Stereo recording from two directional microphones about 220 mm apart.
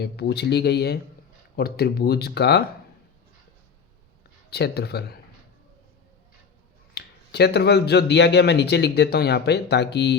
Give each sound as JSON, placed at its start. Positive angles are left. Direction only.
{"t": 0.0, "sound": "speech", "side_deg": 50}
{"t": 4.5, "sound": "speech", "side_deg": 50}
{"t": 6.9, "sound": "speech", "side_deg": 50}